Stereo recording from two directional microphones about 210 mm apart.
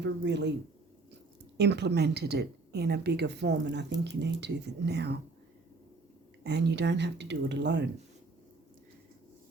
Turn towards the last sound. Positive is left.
turn(degrees=-55)  # may be behind; listen again after turning